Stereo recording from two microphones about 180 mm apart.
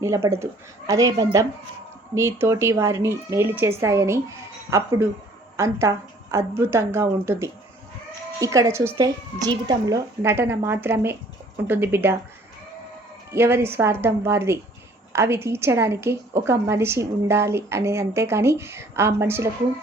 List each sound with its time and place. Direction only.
0.0 s a woman's voice: 15° right (ahead or behind)
13.3 s a woman's voice: 15° right (ahead or behind)